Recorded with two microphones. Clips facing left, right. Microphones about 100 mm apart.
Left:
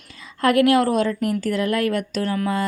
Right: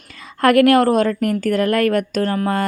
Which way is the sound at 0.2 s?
60° right (ahead or behind).